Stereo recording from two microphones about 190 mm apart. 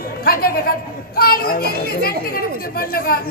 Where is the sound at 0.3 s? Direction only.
55° left (ahead or behind).